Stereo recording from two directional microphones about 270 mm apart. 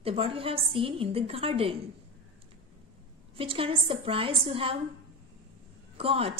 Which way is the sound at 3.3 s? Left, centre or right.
Centre.